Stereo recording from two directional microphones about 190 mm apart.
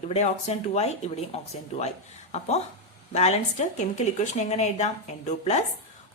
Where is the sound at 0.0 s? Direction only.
35° left (ahead or behind).